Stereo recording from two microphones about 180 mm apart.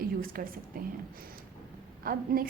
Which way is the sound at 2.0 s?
55° right (ahead or behind).